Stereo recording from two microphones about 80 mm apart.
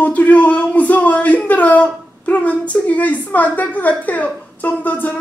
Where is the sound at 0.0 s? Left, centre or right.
Centre.